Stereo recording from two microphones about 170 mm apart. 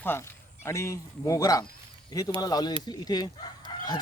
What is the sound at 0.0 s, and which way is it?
A man's voice, 15° left (ahead or behind).